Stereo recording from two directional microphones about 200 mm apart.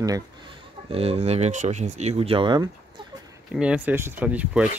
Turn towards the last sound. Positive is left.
turn(degrees=-5)  # may be behind; listen again after turning